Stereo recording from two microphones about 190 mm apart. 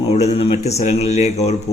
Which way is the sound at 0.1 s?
35° left (ahead or behind).